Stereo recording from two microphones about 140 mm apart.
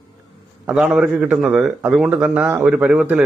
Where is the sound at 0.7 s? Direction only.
5° right (ahead or behind).